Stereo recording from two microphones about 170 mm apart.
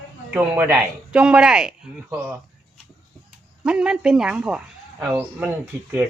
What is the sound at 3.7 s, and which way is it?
Speech, 5° right (ahead or behind).